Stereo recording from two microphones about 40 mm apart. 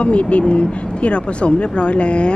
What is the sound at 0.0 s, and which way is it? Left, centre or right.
Speech, left.